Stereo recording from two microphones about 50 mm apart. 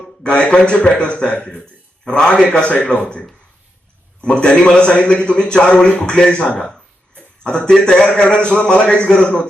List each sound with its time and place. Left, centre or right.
0.2 s a man's voice: centre
4.2 s a man's voice: centre